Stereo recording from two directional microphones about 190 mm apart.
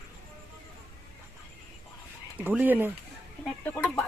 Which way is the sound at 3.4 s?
5° left (ahead or behind).